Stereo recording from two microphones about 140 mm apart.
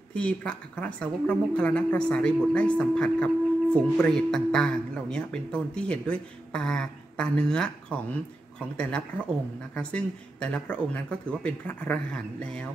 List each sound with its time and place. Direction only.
0.1 s a woman's voice: 10° left (ahead or behind)
9.8 s a woman's voice: 5° left (ahead or behind)